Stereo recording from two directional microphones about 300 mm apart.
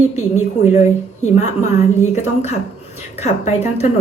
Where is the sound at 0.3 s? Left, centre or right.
Left.